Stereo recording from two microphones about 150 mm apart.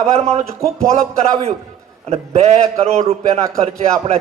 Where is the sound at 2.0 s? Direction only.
45° right (ahead or behind).